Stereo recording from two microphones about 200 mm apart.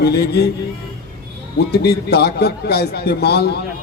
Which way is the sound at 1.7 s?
55° left (ahead or behind).